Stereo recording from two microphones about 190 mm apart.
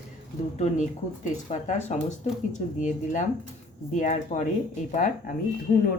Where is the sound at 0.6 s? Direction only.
40° left (ahead or behind).